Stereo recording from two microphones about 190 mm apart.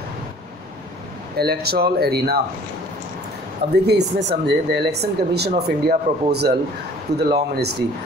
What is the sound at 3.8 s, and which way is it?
Speech, 60° right (ahead or behind).